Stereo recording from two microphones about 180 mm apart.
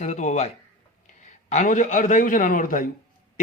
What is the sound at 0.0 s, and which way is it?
A man's voice, 40° left (ahead or behind).